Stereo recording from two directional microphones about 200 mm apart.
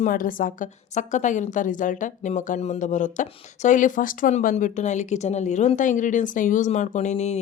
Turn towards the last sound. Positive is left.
turn(degrees=35)  # may be behind; listen again after turning